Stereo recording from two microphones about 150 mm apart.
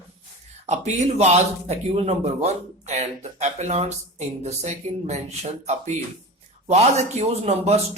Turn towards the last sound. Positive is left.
turn(degrees=-45)  # may be behind; listen again after turning